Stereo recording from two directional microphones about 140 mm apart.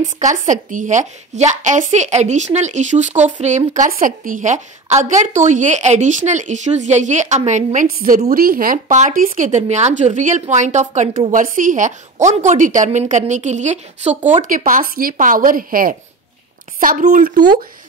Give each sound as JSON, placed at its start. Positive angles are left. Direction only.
{"t": 0.0, "sound": "speech", "side_deg": -65}
{"t": 14.4, "sound": "a woman's voice", "side_deg": -75}
{"t": 16.8, "sound": "a woman's voice", "side_deg": -70}